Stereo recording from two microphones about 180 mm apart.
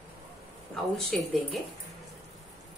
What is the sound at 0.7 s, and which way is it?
Speech, centre (ahead or behind).